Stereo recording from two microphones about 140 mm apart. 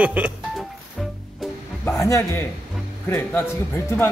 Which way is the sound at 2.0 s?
20° left (ahead or behind).